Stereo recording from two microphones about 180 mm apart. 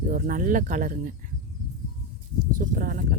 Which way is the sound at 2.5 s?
50° right (ahead or behind).